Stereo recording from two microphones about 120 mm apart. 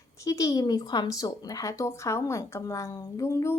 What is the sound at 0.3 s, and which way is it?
Speech, 30° left (ahead or behind).